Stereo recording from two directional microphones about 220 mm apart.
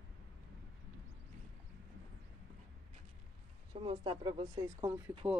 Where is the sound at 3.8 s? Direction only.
25° right (ahead or behind).